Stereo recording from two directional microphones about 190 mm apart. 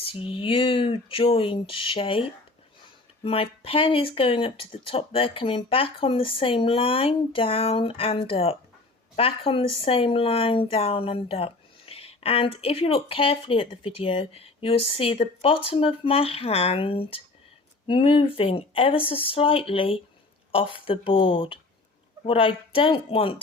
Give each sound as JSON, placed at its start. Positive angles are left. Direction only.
{"t": 0.0, "sound": "speech", "side_deg": 30}